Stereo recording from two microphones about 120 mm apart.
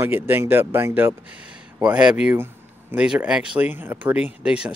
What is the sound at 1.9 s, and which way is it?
Speech, 5° right (ahead or behind).